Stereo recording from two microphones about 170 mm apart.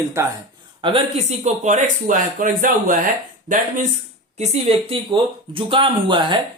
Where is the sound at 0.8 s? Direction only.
30° right (ahead or behind); by 3.9 s 50° right (ahead or behind).